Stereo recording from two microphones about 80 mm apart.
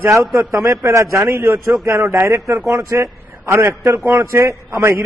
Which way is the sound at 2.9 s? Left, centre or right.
Right.